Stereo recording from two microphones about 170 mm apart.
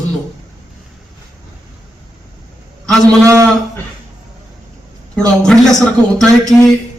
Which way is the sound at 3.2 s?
20° right (ahead or behind).